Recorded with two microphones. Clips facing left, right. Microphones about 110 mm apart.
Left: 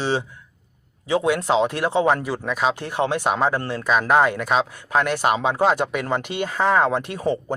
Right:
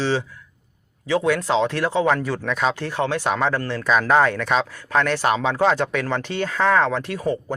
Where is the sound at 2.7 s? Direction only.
15° left (ahead or behind).